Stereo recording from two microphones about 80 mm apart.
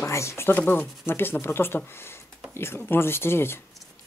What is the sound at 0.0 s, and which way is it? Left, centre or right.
Speech, left.